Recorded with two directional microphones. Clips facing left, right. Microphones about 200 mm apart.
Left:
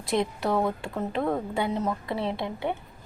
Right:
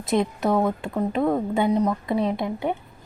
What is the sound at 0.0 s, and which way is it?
A woman's voice, 20° right (ahead or behind).